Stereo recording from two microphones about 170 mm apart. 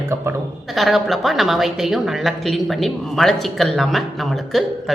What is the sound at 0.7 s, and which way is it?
A woman's voice, centre (ahead or behind).